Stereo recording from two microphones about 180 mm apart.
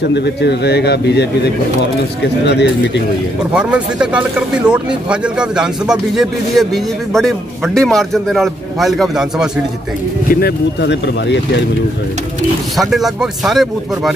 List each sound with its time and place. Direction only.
0.1 s speech: 70° left (ahead or behind)
2.4 s speech: 70° left (ahead or behind)
3.5 s speech: 5° right (ahead or behind)
10.4 s speech: 75° left (ahead or behind)
12.7 s speech: centre (ahead or behind)